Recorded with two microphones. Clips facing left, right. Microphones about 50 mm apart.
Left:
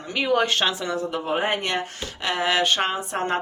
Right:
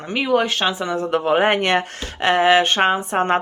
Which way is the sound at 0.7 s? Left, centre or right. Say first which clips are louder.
Right 4 dB; centre.